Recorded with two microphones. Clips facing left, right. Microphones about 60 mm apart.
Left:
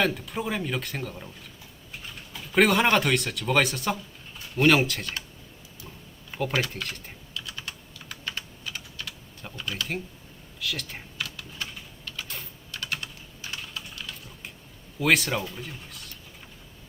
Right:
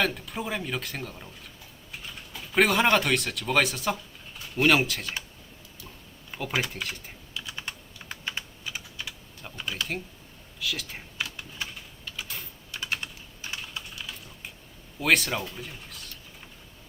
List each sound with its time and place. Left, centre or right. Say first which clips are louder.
0.0 s speech: left 2 dB; centre
2.5 s speech: left 1 dB; centre
6.3 s typing: left 5 dB; centre
6.7 s speech: even; centre
7.3 s computer keyboard: right 1 dB; right
8.4 s typing: even; centre
9.6 s computer keyboard: even; centre
10.6 s speech: even; centre
11.2 s typing: right 1 dB; centre
12.0 s typing: even; centre
12.7 s typing: right 1 dB; centre
13.9 s typing: even; centre
15.0 s speech: left 1 dB; centre